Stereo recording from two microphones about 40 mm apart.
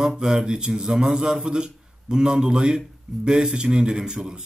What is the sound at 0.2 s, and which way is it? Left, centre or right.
A man's voice, centre.